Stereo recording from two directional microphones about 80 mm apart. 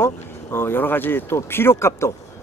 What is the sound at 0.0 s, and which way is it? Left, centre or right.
Speech, left.